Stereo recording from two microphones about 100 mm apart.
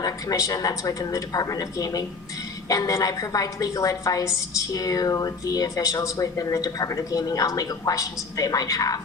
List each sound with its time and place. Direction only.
0.0 s a woman's voice: 35° left (ahead or behind)